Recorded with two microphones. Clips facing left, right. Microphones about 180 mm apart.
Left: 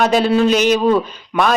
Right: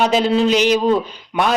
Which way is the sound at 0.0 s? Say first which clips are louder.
Left 2 dB; 20° right (ahead or behind).